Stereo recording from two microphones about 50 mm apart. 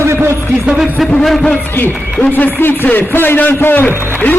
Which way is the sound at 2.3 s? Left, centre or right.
Left.